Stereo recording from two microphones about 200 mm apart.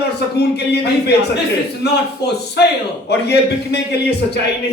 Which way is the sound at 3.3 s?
55° left (ahead or behind).